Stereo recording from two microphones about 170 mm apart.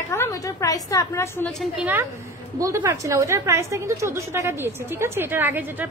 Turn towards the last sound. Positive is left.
turn(degrees=-10)  # may be behind; listen again after turning